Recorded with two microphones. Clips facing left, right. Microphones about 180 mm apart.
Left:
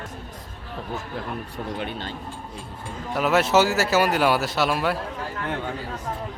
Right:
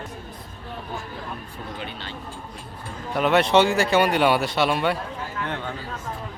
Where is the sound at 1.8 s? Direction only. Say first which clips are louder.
Left 4 dB; 50° left (ahead or behind).